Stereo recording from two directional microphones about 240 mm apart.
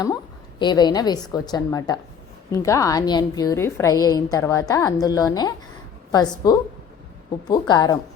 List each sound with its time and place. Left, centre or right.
0.6 s a woman's voice: centre
7.7 s a woman's voice: centre